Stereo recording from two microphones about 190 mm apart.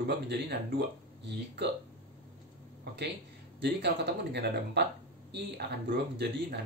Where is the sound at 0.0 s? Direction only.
60° right (ahead or behind).